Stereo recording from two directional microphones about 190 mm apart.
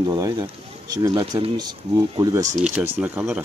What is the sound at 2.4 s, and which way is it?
Speech, 40° right (ahead or behind).